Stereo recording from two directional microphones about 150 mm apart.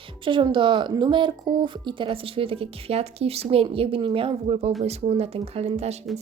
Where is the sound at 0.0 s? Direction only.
35° right (ahead or behind).